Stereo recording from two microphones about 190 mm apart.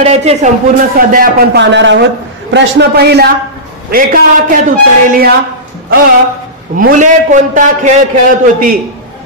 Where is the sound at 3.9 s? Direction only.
45° right (ahead or behind).